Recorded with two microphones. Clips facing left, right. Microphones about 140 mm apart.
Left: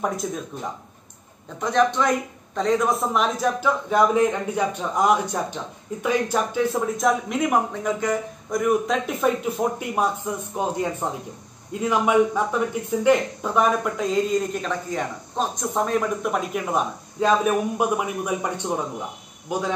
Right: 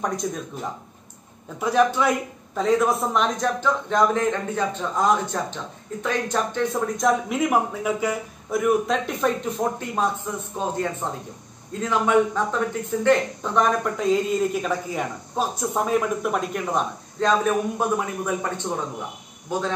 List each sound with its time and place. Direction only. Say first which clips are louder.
0.2 s a man's voice: even; centre (ahead or behind)
1.6 s a woman's voice: right 1 dB; 5° right (ahead or behind)
9.6 s speech: left 1 dB; 15° left (ahead or behind)